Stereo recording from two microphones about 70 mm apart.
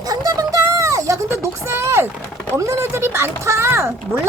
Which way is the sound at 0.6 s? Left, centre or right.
Right.